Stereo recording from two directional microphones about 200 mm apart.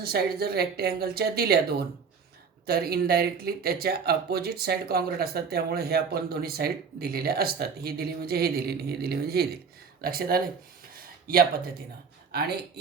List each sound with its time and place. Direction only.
0.0 s speech: 50° right (ahead or behind)
2.6 s speech: 50° right (ahead or behind)
10.9 s a sound: 45° right (ahead or behind)
12.3 s speech: 55° right (ahead or behind)